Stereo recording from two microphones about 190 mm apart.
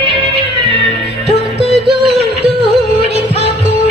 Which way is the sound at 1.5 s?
60° right (ahead or behind).